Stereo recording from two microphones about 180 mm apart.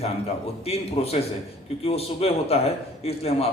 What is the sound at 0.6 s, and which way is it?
A man's voice, 35° left (ahead or behind).